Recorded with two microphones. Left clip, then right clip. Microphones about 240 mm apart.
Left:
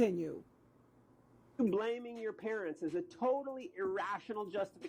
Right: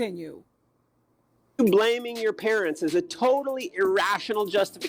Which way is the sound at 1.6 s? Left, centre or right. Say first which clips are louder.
Right 14 dB; right.